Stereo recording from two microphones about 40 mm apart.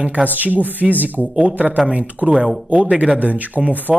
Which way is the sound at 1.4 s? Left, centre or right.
Right.